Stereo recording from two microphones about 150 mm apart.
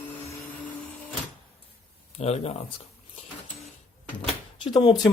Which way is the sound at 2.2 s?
45° left (ahead or behind).